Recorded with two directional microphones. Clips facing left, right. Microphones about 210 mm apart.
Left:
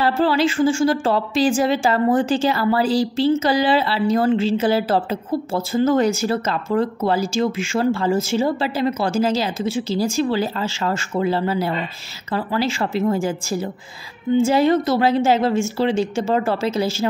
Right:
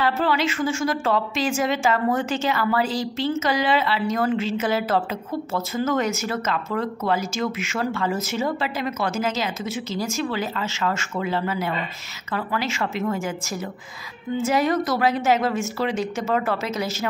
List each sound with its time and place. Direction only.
0.0 s a woman's voice: 35° left (ahead or behind)